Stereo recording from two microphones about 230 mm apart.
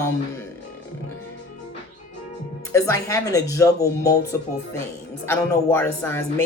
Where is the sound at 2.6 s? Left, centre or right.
Centre.